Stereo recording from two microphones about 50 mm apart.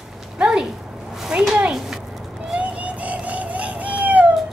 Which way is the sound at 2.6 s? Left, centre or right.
Right.